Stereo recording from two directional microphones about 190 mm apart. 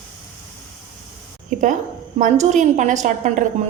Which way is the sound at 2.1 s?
40° right (ahead or behind).